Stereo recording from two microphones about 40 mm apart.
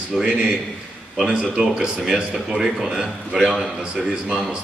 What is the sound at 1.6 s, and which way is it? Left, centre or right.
A man's voice, centre.